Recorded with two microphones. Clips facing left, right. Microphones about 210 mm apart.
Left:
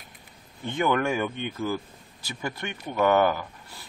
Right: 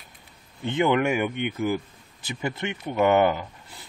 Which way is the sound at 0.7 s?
20° right (ahead or behind).